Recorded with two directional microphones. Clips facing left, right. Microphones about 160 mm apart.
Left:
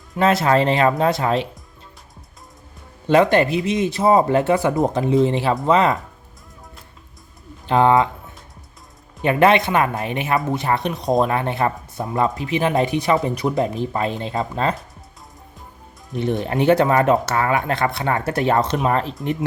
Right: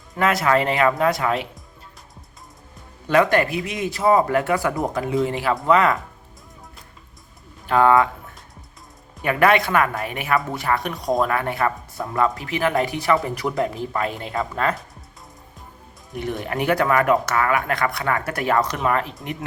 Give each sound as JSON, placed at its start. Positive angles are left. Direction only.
{"t": 0.2, "sound": "speech", "side_deg": 25}
{"t": 3.1, "sound": "speech", "side_deg": 25}
{"t": 7.7, "sound": "speech", "side_deg": 20}
{"t": 9.2, "sound": "speech", "side_deg": 25}
{"t": 16.1, "sound": "speech", "side_deg": 25}